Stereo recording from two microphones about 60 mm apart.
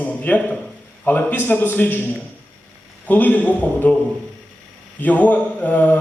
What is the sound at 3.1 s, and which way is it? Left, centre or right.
Speech, left.